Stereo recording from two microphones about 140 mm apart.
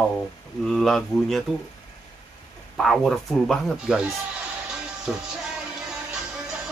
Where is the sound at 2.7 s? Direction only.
Centre (ahead or behind).